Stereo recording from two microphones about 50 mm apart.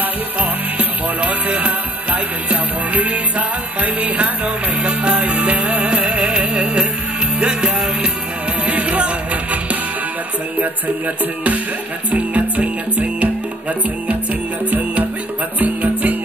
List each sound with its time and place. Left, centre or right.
0.4 s music: right
12.1 s music: right
14.7 s music: right